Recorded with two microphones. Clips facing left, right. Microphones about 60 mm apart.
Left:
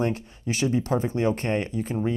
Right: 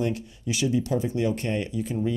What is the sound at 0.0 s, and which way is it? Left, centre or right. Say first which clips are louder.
Speech: left 1 dB; left.